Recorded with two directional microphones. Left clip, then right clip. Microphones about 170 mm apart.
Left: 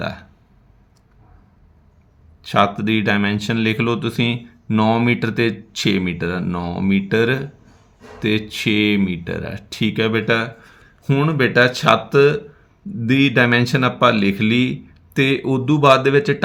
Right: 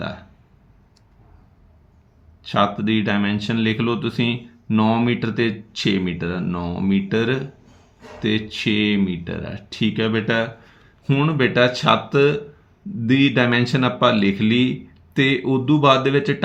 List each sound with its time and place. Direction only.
0.0 s burping: 40° left (ahead or behind)
2.4 s speech: 40° left (ahead or behind)